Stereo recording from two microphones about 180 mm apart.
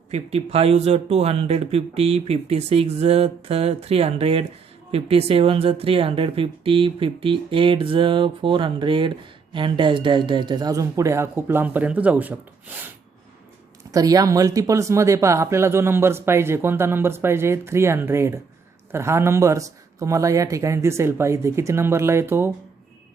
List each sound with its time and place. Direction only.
0.1 s speech: 35° right (ahead or behind); by 12.9 s 10° right (ahead or behind)
13.9 s speech: 20° right (ahead or behind)